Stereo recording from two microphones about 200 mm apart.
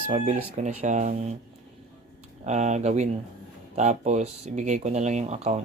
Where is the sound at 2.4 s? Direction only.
35° right (ahead or behind).